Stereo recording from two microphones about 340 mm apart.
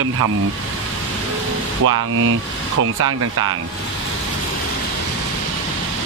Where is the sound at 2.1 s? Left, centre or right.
Right.